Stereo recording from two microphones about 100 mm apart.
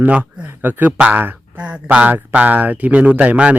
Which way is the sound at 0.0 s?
15° right (ahead or behind).